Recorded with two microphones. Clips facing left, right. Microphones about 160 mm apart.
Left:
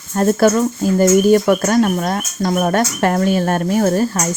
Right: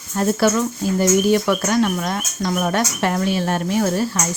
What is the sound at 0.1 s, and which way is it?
Speech, 45° left (ahead or behind).